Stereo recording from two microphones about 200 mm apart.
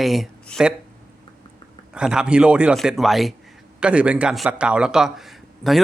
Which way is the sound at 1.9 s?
5° right (ahead or behind).